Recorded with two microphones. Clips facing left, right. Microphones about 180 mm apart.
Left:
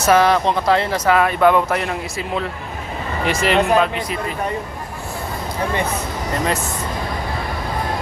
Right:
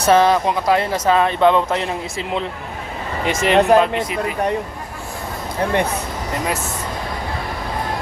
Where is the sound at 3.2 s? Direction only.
20° right (ahead or behind).